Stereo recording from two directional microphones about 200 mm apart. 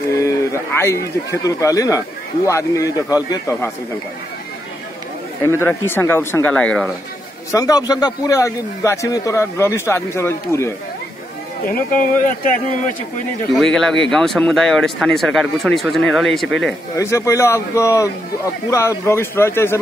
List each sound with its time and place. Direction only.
0.1 s a man's voice: 15° left (ahead or behind)
5.4 s a man's voice: 15° left (ahead or behind)
7.5 s a man's voice: 20° left (ahead or behind)
13.5 s speech: centre (ahead or behind)
16.9 s a man's voice: 15° left (ahead or behind)